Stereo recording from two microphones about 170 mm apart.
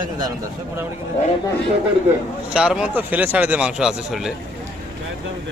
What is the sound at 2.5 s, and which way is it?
Speech, 5° right (ahead or behind).